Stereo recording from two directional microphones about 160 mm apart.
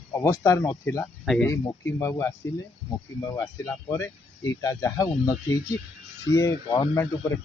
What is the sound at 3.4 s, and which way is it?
Speech, 20° left (ahead or behind).